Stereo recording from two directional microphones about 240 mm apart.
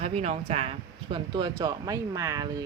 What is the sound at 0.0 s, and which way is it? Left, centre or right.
Speech, right.